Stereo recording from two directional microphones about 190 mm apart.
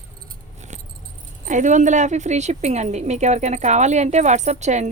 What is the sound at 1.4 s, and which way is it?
Speech, 40° right (ahead or behind).